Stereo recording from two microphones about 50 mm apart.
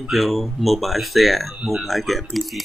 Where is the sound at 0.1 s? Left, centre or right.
Centre.